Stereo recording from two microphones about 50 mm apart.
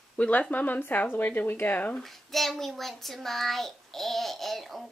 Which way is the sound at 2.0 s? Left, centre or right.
Centre.